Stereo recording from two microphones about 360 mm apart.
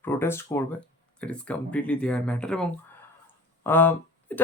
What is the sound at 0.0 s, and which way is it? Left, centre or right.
Speech, centre.